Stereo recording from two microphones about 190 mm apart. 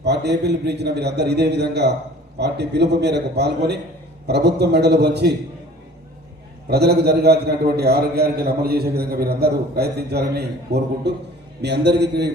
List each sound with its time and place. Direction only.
0.0 s a man's voice: 60° right (ahead or behind)
6.7 s a man's voice: 60° right (ahead or behind)